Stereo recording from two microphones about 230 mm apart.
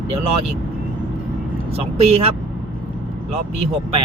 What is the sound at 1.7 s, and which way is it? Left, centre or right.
Speech, right.